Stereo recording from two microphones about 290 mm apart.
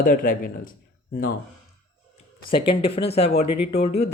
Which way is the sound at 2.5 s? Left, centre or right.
Centre.